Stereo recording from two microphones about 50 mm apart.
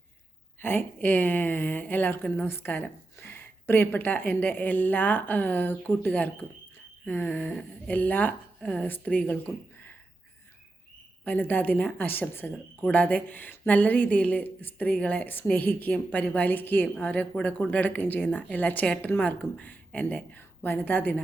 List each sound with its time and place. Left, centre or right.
0.6 s speech: left
2.7 s speech: left
11.3 s speech: left
14.4 s speech: left